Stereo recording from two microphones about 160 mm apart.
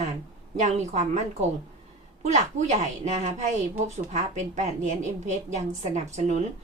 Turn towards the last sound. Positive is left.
turn(degrees=-45)  # may be behind; listen again after turning